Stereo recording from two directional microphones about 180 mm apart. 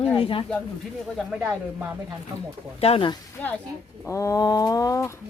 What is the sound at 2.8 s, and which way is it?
Speech, 30° left (ahead or behind).